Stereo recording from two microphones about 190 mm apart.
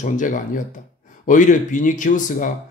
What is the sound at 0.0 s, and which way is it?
Speech, 45° left (ahead or behind).